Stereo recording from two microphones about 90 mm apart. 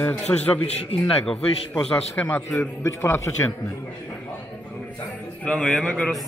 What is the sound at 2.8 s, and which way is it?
Speech, 30° left (ahead or behind).